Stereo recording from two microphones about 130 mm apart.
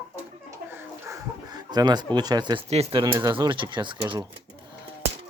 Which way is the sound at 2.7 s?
45° right (ahead or behind).